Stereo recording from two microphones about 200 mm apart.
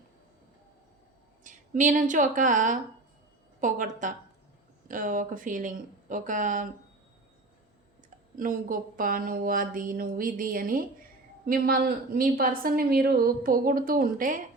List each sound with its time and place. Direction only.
1.5 s a woman's voice: 40° right (ahead or behind)
8.4 s a woman's voice: 45° right (ahead or behind)